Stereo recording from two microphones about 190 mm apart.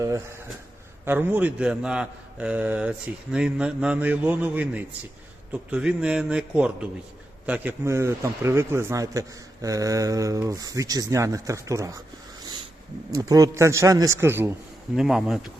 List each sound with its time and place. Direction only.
1.0 s a man's voice: 10° right (ahead or behind)
13.1 s a man's voice: 15° right (ahead or behind)
14.9 s a man's voice: centre (ahead or behind)